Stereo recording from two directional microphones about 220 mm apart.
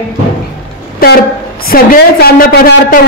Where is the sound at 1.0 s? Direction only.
40° left (ahead or behind).